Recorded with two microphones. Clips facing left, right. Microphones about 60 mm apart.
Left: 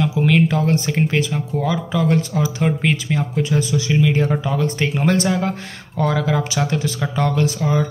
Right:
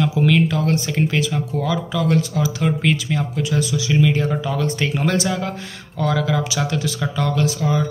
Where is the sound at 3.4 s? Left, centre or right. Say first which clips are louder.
Left 1 dB; left.